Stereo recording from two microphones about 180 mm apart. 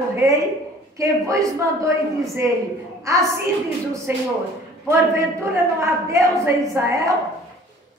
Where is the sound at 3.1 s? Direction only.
15° right (ahead or behind).